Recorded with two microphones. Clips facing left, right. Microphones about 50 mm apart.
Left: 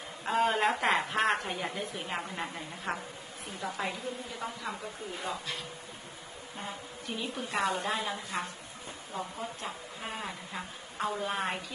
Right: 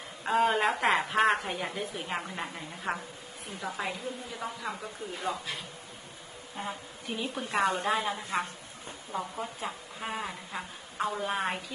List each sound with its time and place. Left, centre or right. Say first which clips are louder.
0.2 s a woman's voice: right 2 dB; centre
7.5 s a woman's voice: right 3 dB; right
7.8 s a woman's voice: right 4 dB; centre